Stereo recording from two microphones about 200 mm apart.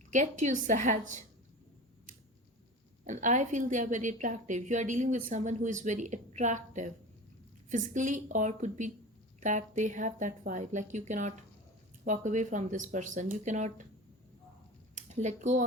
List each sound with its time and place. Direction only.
0.1 s a woman's voice: 40° right (ahead or behind)
3.0 s a woman's voice: 40° right (ahead or behind)
14.9 s speech: 35° right (ahead or behind)